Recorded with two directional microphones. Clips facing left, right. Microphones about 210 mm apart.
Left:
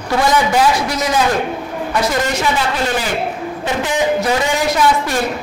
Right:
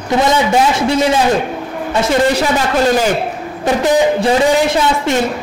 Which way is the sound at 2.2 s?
35° right (ahead or behind).